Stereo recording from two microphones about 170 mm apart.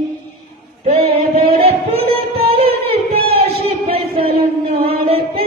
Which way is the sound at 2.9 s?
35° right (ahead or behind).